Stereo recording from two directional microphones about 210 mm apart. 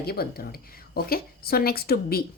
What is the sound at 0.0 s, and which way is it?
Speech, 45° left (ahead or behind).